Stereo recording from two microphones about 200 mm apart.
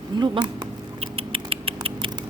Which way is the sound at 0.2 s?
20° right (ahead or behind).